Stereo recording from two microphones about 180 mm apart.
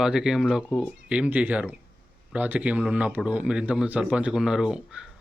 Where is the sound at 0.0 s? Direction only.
5° right (ahead or behind).